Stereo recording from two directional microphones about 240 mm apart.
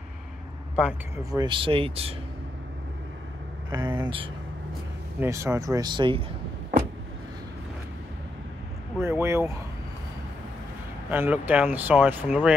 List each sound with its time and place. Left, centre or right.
0.7 s speech: centre
1.3 s speech: centre
3.7 s speech: centre
9.0 s speech: centre
11.1 s speech: centre